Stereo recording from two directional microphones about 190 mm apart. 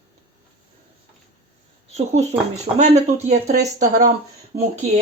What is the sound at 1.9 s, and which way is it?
Speech, 35° right (ahead or behind).